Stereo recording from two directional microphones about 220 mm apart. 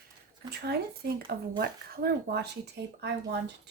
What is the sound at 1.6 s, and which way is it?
Speech, 45° right (ahead or behind).